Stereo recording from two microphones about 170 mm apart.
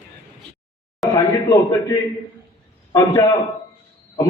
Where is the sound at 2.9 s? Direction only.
20° left (ahead or behind).